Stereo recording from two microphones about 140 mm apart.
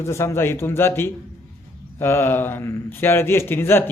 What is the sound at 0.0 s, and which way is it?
A man's voice, 20° left (ahead or behind).